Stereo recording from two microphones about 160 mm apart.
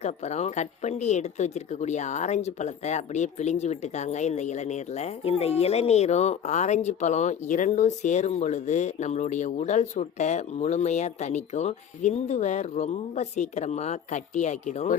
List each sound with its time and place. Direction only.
0.0 s speech: 45° left (ahead or behind)